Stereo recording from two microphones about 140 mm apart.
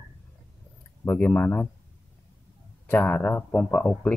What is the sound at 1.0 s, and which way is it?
Speech, 10° left (ahead or behind).